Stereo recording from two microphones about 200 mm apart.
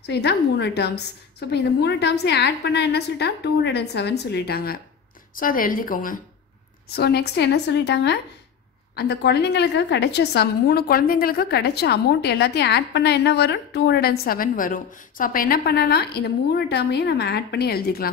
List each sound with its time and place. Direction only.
0.0 s a woman's voice: 55° left (ahead or behind)